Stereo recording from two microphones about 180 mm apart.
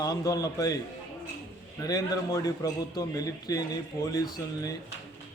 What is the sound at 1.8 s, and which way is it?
A man's voice, 20° left (ahead or behind).